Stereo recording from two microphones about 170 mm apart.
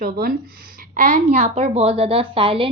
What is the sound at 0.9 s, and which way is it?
Speech, 45° right (ahead or behind).